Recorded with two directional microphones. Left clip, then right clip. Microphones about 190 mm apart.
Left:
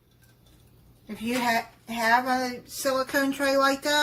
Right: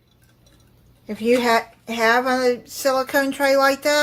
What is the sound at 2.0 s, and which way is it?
Speech, 50° right (ahead or behind).